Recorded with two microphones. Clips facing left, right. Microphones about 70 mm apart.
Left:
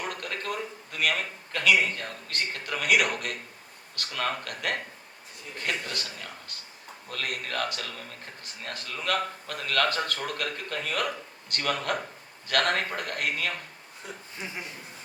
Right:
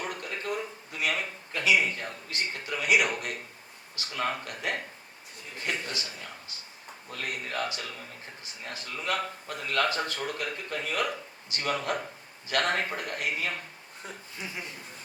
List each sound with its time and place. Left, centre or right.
0.1 s a man's voice: left